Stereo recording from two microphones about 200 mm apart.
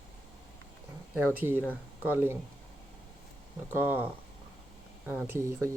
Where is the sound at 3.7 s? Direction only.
10° right (ahead or behind).